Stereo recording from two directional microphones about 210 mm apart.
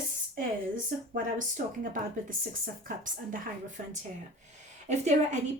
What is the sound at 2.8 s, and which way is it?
Speech, 40° right (ahead or behind).